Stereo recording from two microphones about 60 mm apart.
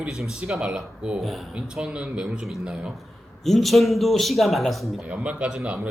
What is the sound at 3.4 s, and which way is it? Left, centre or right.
Speech, centre.